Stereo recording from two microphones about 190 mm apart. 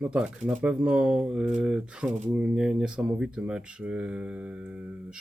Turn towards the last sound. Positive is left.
turn(degrees=-5)  # may be behind; listen again after turning